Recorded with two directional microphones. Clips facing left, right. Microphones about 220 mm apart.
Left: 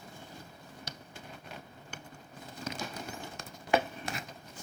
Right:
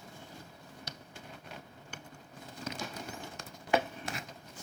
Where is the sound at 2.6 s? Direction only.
15° left (ahead or behind).